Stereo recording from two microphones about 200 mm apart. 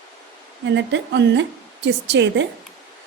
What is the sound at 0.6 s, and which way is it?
A woman's voice, 60° right (ahead or behind).